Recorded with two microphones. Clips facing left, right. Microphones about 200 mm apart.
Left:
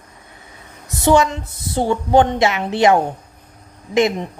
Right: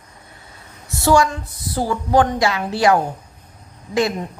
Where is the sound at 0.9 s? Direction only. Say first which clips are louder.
Left 1 dB; 20° left (ahead or behind).